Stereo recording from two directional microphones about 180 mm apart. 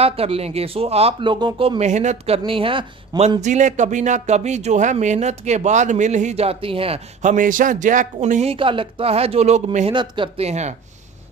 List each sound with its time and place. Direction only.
0.0 s speech: 35° right (ahead or behind)
1.8 s speech: 40° right (ahead or behind)
3.3 s speech: 40° right (ahead or behind)